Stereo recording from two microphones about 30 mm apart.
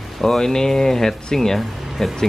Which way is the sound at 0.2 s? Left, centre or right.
Centre.